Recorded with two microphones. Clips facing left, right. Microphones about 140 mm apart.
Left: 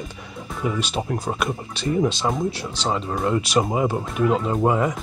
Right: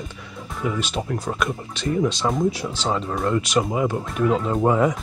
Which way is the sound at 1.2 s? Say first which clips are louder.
Even; 30° left (ahead or behind).